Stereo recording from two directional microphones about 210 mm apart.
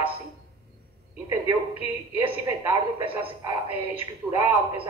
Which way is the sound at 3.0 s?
25° right (ahead or behind).